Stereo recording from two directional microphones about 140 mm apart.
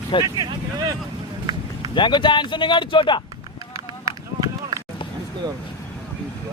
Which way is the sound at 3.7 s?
25° right (ahead or behind).